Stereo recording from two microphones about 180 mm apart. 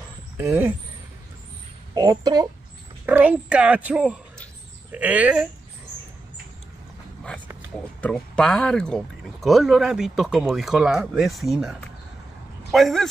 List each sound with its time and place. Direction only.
0.4 s speech: 10° right (ahead or behind)
2.0 s speech: 20° right (ahead or behind)
3.1 s a woman's voice: 5° right (ahead or behind)
8.0 s speech: 5° left (ahead or behind)